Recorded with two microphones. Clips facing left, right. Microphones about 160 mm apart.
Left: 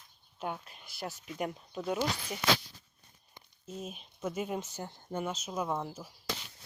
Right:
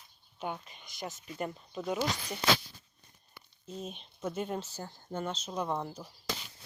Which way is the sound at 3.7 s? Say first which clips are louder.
Right 1 dB; 5° left (ahead or behind).